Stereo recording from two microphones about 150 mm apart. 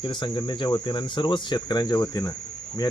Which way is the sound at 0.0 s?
30° left (ahead or behind).